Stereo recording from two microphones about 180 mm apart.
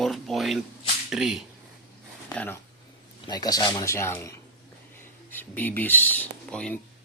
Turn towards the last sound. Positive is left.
turn(degrees=5)  # may be behind; listen again after turning